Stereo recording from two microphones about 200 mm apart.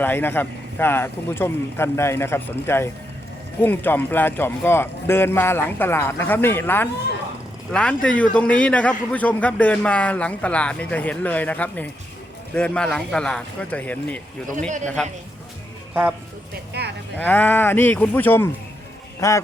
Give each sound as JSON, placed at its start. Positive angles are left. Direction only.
{"t": 0.0, "sound": "a man's voice", "side_deg": 10}
{"t": 16.8, "sound": "cattle", "side_deg": -55}
{"t": 17.2, "sound": "a man's voice", "side_deg": 10}